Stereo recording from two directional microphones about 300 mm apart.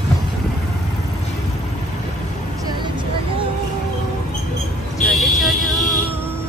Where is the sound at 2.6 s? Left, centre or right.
Centre.